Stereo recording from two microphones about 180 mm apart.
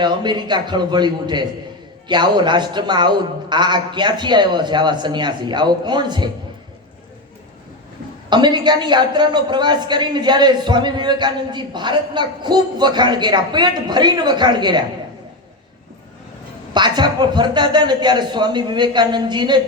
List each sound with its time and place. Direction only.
0.0 s a woman's voice: 25° right (ahead or behind)
8.3 s a woman's voice: 25° right (ahead or behind)
16.7 s a woman's voice: 25° right (ahead or behind)